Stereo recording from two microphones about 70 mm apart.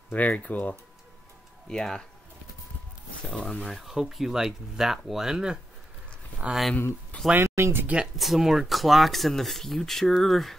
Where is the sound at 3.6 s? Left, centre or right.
Centre.